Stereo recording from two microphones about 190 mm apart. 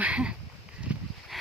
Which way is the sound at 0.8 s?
5° right (ahead or behind).